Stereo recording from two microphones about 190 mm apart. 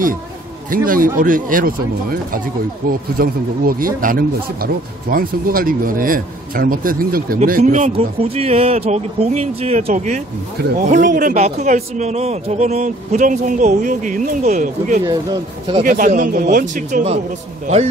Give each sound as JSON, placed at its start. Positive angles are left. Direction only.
{"t": 0.7, "sound": "a man's voice", "side_deg": -45}